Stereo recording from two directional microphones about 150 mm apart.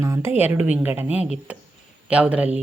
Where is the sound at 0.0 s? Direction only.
20° right (ahead or behind).